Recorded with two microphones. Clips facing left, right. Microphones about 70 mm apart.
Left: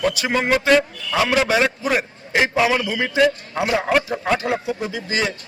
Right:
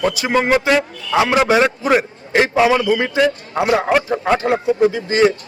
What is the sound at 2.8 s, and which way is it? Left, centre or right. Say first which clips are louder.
A man's voice: right 3 dB; right.